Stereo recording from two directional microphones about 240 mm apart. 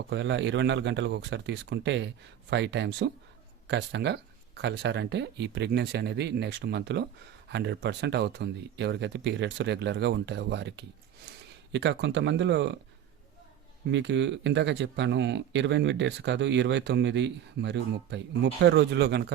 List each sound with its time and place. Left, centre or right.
0.1 s speech: right
13.8 s speech: right